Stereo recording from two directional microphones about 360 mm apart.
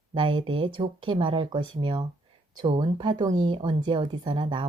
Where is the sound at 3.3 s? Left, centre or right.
Right.